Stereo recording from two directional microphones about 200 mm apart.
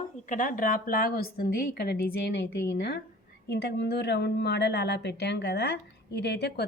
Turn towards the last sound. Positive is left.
turn(degrees=55)  # may be behind; listen again after turning